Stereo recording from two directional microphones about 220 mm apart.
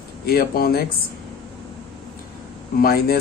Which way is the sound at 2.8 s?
45° left (ahead or behind).